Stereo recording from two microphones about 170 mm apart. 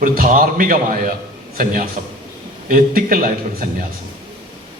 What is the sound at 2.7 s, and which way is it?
Speech, 55° right (ahead or behind).